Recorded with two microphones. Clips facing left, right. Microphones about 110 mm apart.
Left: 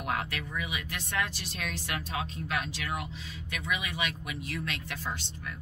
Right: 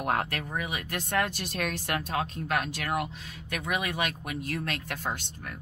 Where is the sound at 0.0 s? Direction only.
45° right (ahead or behind).